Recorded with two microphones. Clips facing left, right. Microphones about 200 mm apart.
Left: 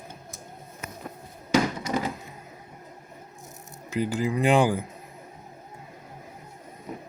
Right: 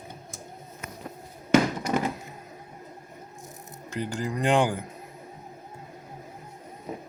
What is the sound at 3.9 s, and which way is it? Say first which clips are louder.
Speech: left 5 dB; 5° left (ahead or behind).